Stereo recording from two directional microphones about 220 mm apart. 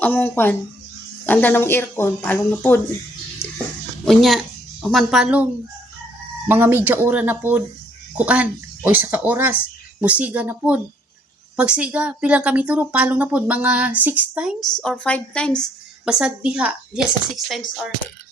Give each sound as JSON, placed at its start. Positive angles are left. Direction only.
{"t": 0.0, "sound": "speech", "side_deg": 5}
{"t": 3.4, "sound": "a sound", "side_deg": 25}
{"t": 4.0, "sound": "a woman's voice", "side_deg": 0}
{"t": 6.5, "sound": "speech", "side_deg": -10}